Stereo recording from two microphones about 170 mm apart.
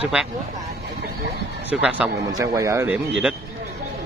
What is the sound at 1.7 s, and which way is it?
Speech, 5° right (ahead or behind).